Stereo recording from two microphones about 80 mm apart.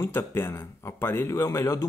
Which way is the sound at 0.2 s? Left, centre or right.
Left.